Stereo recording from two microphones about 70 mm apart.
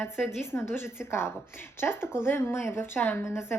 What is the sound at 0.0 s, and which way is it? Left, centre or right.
A woman's voice, left.